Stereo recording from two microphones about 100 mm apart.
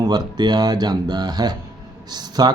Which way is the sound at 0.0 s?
45° right (ahead or behind).